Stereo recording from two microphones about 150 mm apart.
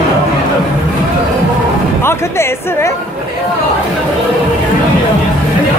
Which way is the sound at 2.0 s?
15° left (ahead or behind).